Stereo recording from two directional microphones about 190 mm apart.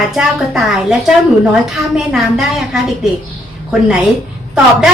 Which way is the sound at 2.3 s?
Centre (ahead or behind).